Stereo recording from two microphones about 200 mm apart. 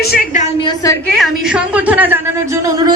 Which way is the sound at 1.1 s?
Centre (ahead or behind).